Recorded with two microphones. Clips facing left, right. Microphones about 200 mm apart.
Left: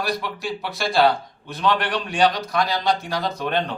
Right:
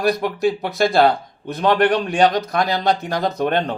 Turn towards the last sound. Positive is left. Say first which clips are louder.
# right 5 dB
turn(degrees=-50)  # may be behind; listen again after turning